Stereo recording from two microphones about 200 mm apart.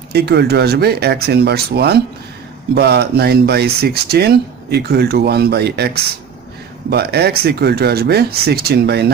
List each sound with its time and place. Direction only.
0.1 s speech: 55° right (ahead or behind)